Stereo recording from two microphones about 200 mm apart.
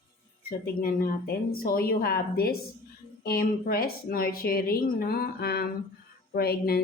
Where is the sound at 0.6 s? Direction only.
45° left (ahead or behind).